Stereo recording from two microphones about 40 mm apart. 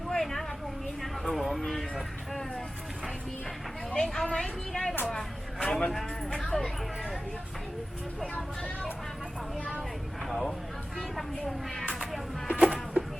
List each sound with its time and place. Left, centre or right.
0.1 s a sound: centre
1.2 s speech: centre
4.0 s a woman's voice: centre
5.9 s speech: centre
10.2 s a woman's voice: centre
12.5 s a sound: right